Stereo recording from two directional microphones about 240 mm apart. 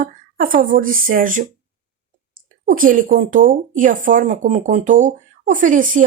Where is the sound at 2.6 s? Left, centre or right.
Right.